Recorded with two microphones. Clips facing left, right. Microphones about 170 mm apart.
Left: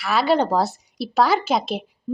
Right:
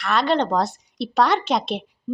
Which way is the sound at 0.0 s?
5° left (ahead or behind).